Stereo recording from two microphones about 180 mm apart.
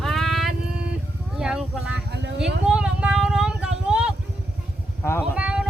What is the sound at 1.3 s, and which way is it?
Speech, 5° right (ahead or behind).